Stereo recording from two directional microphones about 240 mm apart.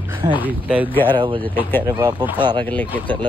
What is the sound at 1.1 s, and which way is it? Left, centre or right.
Speech, centre.